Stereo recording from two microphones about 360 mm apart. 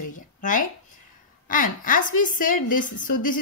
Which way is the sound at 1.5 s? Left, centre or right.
Left.